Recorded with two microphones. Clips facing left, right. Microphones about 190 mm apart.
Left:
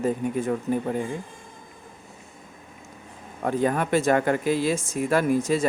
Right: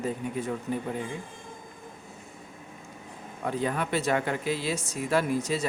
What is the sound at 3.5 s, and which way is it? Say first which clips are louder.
A man's voice: left 6 dB; 50° left (ahead or behind).